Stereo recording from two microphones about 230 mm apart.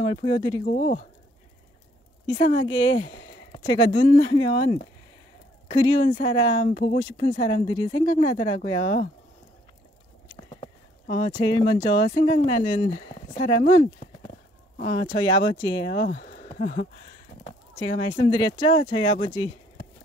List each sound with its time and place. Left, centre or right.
0.0 s speech: left
0.7 s speech: left
2.2 s speech: left
10.5 s speech: left
17.4 s speech: left